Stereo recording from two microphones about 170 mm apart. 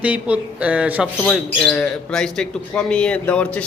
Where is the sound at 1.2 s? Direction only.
5° left (ahead or behind).